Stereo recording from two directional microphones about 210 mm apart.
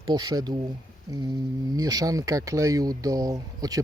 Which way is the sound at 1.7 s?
15° right (ahead or behind).